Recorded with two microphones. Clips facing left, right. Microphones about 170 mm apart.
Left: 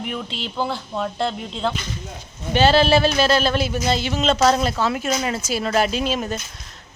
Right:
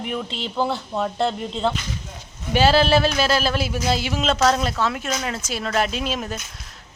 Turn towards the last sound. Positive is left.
turn(degrees=0)  # may be behind; listen again after turning